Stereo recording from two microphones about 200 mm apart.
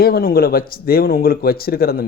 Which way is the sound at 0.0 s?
50° left (ahead or behind).